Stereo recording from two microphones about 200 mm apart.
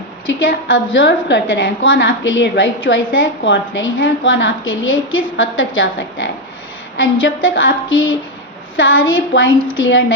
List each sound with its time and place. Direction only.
0.3 s a woman's voice: 70° left (ahead or behind)